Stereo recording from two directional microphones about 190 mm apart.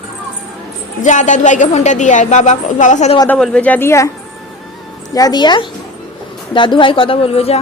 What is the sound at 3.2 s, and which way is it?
Speech, 5° left (ahead or behind).